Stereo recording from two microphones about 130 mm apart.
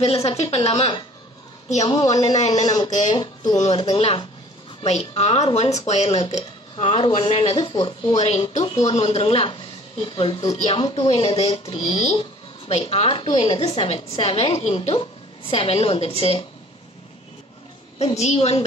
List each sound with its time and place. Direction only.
0.0 s a woman's voice: 50° left (ahead or behind)
1.9 s speech: 30° left (ahead or behind)
2.3 s speech: 60° left (ahead or behind)
2.6 s speech: 30° left (ahead or behind)
3.5 s speech: 55° left (ahead or behind)
3.9 s speech: 40° left (ahead or behind)
4.8 s speech: 55° left (ahead or behind)
6.0 s speech: 50° left (ahead or behind); by 8.2 s 35° left (ahead or behind)
8.8 s speech: 50° left (ahead or behind)
10.4 s speech: 30° left (ahead or behind)
10.8 s a woman's voice: 45° left (ahead or behind)
11.4 s speech: 30° left (ahead or behind)
11.8 s a woman's voice: 55° left (ahead or behind)
17.9 s a woman's voice: 55° left (ahead or behind)